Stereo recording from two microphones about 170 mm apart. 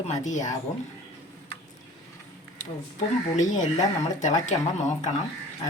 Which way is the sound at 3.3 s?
45° left (ahead or behind).